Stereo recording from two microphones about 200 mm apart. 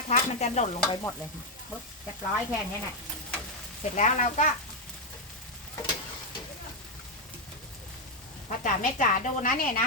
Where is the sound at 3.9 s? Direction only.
35° left (ahead or behind).